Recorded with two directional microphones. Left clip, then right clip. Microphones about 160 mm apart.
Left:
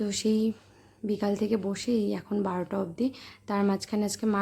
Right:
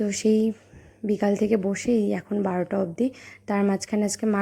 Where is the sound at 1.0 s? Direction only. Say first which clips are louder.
Right 6 dB; 25° right (ahead or behind).